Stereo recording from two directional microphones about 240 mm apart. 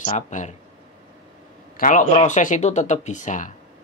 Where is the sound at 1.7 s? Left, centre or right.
Left.